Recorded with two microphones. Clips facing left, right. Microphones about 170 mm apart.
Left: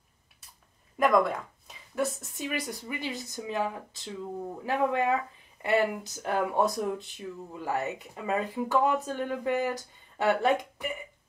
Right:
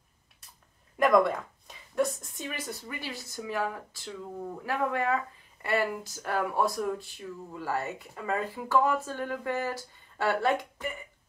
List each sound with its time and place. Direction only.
0.9 s speech: centre (ahead or behind); by 10.9 s 20° left (ahead or behind)